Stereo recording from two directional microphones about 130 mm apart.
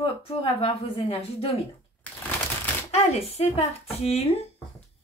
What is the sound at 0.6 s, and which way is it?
Speech, 45° left (ahead or behind).